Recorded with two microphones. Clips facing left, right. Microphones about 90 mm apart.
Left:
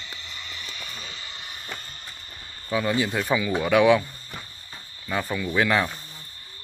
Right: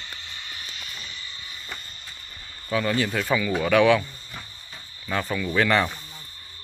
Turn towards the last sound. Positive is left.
turn(degrees=5)  # may be behind; listen again after turning